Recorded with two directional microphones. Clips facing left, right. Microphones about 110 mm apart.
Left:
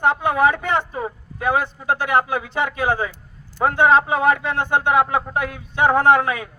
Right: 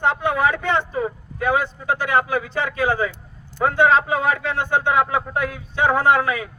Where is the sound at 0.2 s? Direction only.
15° left (ahead or behind).